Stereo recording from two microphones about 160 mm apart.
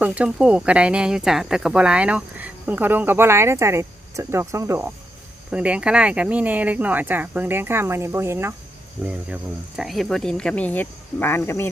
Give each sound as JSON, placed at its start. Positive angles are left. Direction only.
{"t": 0.0, "sound": "speech", "side_deg": -10}
{"t": 9.0, "sound": "speech", "side_deg": -5}